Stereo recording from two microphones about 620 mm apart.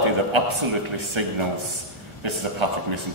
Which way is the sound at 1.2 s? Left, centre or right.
Right.